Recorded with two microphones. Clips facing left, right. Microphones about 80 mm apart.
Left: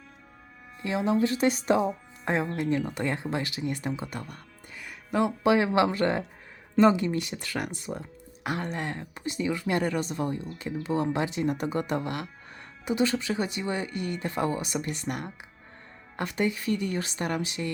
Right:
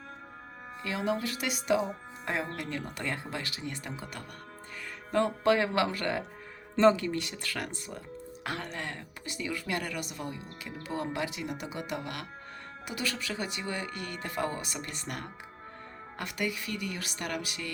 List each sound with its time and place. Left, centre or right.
0.9 s speech: left
5.1 s speech: centre
11.4 s speech: left